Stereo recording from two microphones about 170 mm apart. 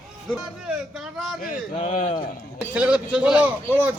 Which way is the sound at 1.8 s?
35° left (ahead or behind).